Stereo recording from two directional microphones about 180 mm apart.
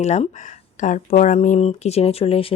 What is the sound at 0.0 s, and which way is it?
Speech, 40° left (ahead or behind).